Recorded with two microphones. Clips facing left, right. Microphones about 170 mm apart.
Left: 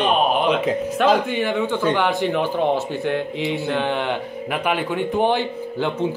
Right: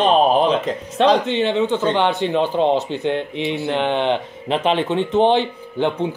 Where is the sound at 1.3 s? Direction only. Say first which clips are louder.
Right 3 dB; 20° right (ahead or behind).